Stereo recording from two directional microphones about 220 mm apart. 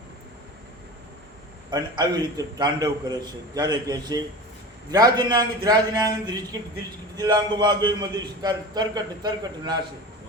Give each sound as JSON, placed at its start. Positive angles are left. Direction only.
{"t": 1.7, "sound": "a man's voice", "side_deg": -20}